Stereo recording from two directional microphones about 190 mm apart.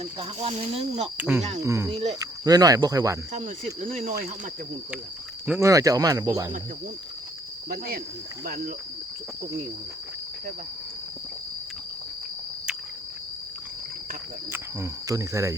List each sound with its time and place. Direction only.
0.0 s speech: 30° right (ahead or behind)
1.6 s cricket: 15° right (ahead or behind)
1.9 s speech: 35° right (ahead or behind)
2.1 s cricket: 20° right (ahead or behind)
3.8 s speech: 40° right (ahead or behind)
5.5 s cricket: 15° right (ahead or behind)
7.7 s speech: 50° right (ahead or behind)
14.5 s cricket: 15° right (ahead or behind)